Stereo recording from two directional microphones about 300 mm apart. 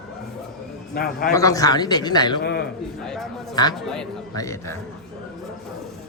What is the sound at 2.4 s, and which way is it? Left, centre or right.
Speech, left.